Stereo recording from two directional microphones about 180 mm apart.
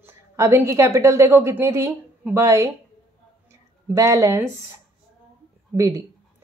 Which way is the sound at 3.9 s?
15° right (ahead or behind).